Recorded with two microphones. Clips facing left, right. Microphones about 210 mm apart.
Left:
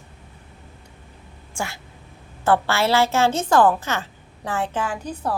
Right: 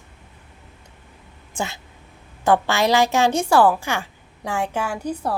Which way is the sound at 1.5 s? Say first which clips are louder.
Right 2 dB; 20° right (ahead or behind).